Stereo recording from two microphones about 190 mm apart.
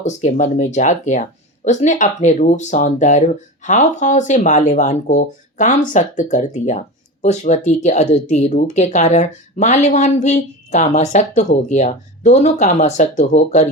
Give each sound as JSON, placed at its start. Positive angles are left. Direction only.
{"t": 0.0, "sound": "speech", "side_deg": 40}